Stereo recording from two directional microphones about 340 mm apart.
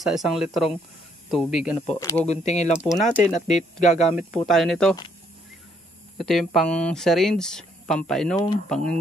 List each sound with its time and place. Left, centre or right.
0.0 s speech: centre
1.9 s speech: centre
2.4 s speech: left
2.8 s speech: centre
3.4 s speech: left
4.4 s speech: centre
6.1 s speech: centre